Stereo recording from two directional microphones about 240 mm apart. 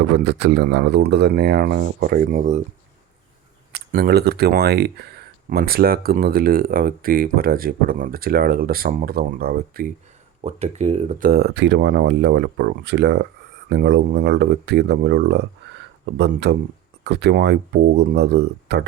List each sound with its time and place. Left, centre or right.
0.0 s speech: right
3.7 s speech: right
10.4 s speech: right